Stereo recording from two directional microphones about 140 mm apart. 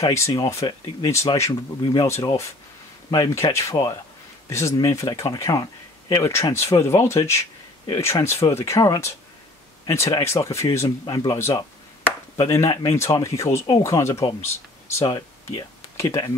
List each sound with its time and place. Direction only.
0.0 s speech: 20° left (ahead or behind)
3.5 s speech: 25° left (ahead or behind)